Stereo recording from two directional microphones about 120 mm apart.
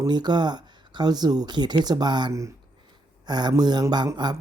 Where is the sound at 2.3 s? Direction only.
25° right (ahead or behind).